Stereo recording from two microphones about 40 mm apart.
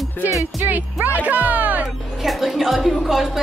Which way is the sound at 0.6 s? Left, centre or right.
Right.